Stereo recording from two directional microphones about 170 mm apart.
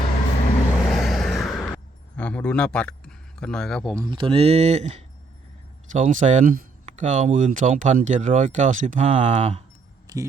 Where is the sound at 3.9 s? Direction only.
25° right (ahead or behind); by 9.6 s 40° right (ahead or behind).